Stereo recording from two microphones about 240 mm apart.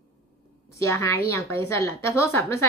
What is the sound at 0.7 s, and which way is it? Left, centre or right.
A woman's voice, centre.